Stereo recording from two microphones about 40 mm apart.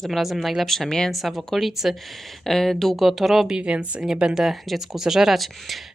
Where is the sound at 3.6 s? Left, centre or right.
Right.